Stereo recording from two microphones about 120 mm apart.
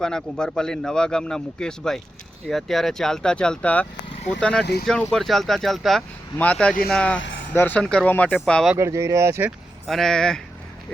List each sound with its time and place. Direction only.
0.0 s speech: 5° left (ahead or behind)
8.8 s speech: 25° right (ahead or behind)
9.8 s speech: centre (ahead or behind)